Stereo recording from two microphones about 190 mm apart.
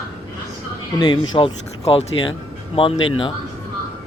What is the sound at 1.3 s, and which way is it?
Speech, 30° left (ahead or behind).